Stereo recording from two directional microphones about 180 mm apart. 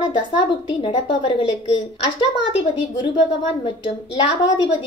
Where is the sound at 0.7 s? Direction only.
30° left (ahead or behind).